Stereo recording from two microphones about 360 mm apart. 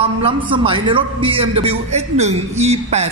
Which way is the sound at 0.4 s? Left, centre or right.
Centre.